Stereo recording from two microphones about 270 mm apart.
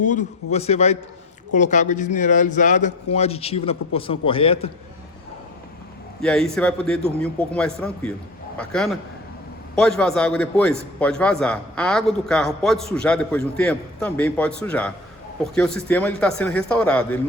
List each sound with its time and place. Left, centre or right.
0.1 s a man's voice: left
6.2 s a man's voice: centre